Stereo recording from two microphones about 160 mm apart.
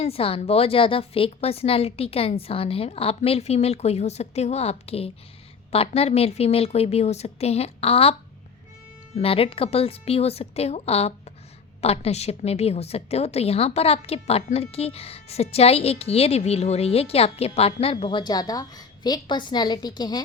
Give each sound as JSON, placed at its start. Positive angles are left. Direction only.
{"t": 0.0, "sound": "a woman's voice", "side_deg": 35}
{"t": 9.1, "sound": "a woman's voice", "side_deg": 35}